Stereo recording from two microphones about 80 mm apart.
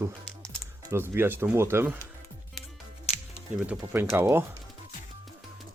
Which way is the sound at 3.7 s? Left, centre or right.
Centre.